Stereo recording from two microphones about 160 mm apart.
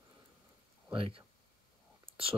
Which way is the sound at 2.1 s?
35° right (ahead or behind).